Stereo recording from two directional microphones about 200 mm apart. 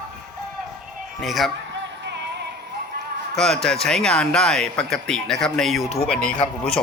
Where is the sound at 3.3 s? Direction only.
Centre (ahead or behind).